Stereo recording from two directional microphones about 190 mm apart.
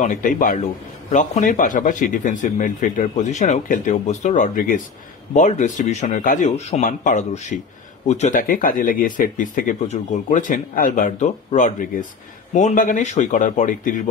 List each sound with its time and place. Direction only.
0.0 s speech: 45° left (ahead or behind)